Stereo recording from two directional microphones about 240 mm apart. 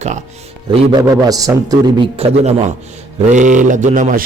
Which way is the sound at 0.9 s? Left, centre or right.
Centre.